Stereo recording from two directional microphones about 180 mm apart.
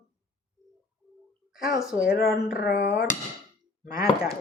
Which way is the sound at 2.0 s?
55° left (ahead or behind).